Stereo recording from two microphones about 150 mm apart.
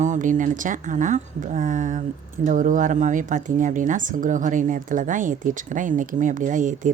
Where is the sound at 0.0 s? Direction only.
55° right (ahead or behind).